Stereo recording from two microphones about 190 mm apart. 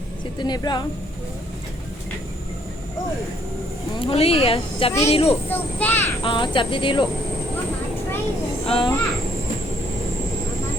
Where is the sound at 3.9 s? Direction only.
30° left (ahead or behind).